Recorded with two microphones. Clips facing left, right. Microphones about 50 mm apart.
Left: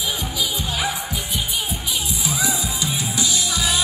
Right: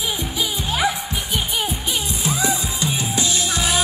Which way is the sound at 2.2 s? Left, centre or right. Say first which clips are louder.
Right 3 dB; right.